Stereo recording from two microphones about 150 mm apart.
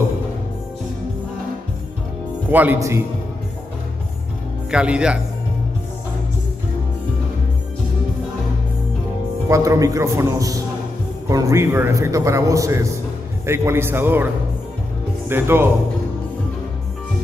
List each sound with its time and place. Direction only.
2.5 s a man's voice: 10° right (ahead or behind)
4.6 s a man's voice: 5° right (ahead or behind)
9.5 s a man's voice: 20° right (ahead or behind)